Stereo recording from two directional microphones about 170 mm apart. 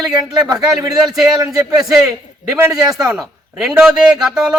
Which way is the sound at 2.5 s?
5° right (ahead or behind).